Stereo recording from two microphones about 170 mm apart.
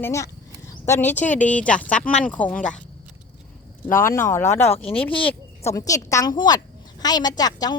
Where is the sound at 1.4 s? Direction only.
10° left (ahead or behind).